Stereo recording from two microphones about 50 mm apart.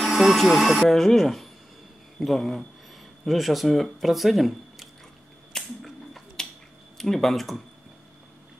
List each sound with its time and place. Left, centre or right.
0.0 s speech: centre
5.5 s a sound: centre
6.4 s finger snapping: centre
7.0 s speech: centre